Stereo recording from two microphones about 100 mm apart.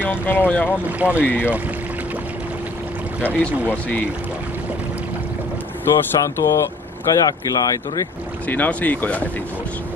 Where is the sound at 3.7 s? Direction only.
15° left (ahead or behind).